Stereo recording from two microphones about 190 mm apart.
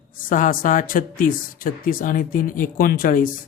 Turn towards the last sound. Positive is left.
turn(degrees=45)  # may be behind; listen again after turning